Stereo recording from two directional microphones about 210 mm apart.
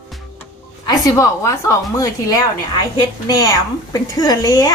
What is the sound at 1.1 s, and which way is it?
A woman's voice, 10° left (ahead or behind).